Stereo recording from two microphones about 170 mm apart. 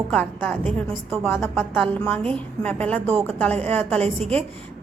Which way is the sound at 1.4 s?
15° left (ahead or behind).